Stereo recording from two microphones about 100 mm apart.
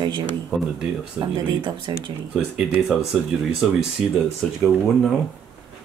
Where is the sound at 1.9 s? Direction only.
5° right (ahead or behind).